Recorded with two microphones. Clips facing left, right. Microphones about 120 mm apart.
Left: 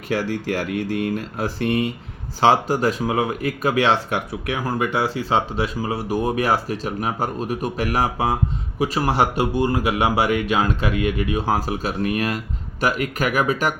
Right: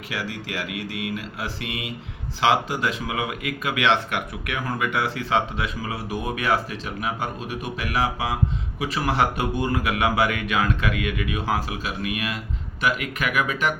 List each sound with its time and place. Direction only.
0.1 s speech: 45° left (ahead or behind)